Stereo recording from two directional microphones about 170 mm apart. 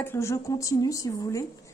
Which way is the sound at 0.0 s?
15° left (ahead or behind).